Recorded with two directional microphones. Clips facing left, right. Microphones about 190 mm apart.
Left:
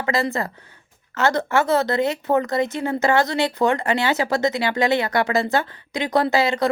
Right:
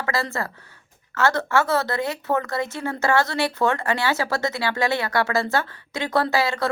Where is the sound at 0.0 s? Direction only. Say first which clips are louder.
Left 4 dB; 20° left (ahead or behind).